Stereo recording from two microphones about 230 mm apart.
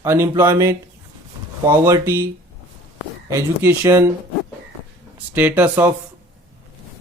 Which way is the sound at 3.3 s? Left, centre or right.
Centre.